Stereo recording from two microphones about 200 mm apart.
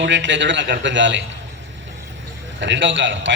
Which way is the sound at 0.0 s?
65° right (ahead or behind).